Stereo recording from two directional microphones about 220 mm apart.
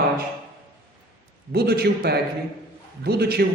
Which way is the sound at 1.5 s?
45° right (ahead or behind).